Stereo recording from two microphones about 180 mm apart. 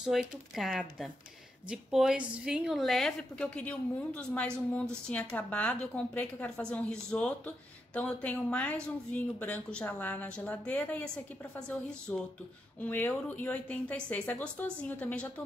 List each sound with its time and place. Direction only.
0.1 s a woman's voice: centre (ahead or behind)